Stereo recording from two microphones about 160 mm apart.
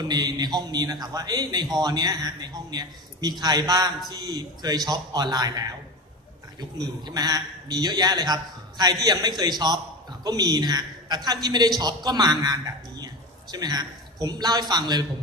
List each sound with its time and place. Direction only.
0.1 s a man's voice: 25° right (ahead or behind)
6.8 s a man's voice: 25° right (ahead or behind)